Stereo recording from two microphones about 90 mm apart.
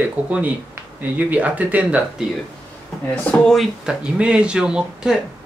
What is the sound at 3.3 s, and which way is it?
Speech, 5° left (ahead or behind).